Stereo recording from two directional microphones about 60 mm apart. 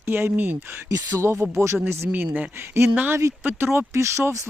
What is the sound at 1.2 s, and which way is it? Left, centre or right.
Speech, right.